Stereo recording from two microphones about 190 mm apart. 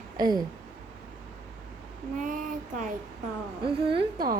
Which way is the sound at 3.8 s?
30° right (ahead or behind).